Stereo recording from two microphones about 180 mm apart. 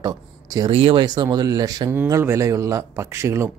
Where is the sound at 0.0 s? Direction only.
20° right (ahead or behind).